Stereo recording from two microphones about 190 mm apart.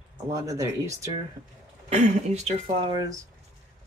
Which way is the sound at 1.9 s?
35° right (ahead or behind).